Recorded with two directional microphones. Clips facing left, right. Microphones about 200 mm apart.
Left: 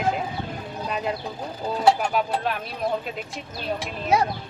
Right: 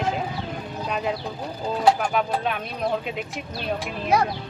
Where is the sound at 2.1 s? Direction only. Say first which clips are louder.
Even; centre (ahead or behind).